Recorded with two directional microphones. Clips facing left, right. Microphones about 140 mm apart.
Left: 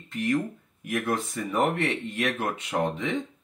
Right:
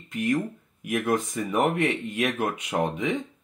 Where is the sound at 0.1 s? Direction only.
15° right (ahead or behind).